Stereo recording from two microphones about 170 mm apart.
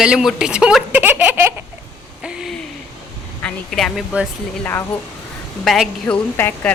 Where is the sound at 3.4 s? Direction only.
5° left (ahead or behind).